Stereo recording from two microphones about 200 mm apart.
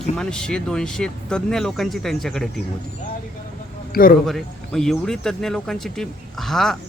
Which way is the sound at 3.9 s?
50° left (ahead or behind).